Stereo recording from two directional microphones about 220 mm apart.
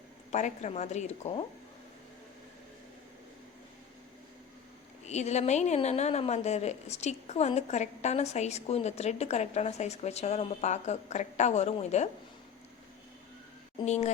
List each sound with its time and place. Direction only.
0.3 s a woman's voice: 30° left (ahead or behind)
5.0 s a woman's voice: 30° left (ahead or behind)
13.8 s a woman's voice: 30° left (ahead or behind)